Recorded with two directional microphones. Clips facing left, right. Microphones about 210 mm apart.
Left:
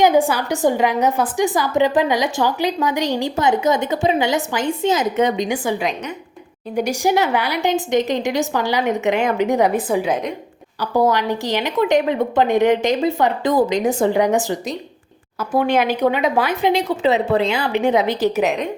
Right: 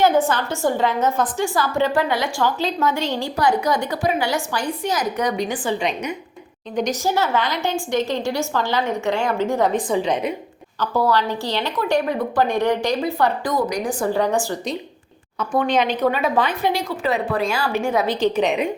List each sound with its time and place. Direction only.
0.0 s a woman's voice: 10° left (ahead or behind)
5.5 s a woman's voice: 10° left (ahead or behind)
10.8 s a woman's voice: 15° left (ahead or behind)
15.4 s a woman's voice: 10° left (ahead or behind)